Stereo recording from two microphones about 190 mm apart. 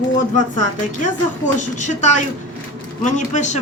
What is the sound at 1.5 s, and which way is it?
Speech, 40° left (ahead or behind).